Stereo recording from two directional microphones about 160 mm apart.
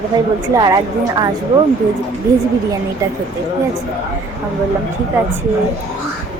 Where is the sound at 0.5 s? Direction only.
25° right (ahead or behind).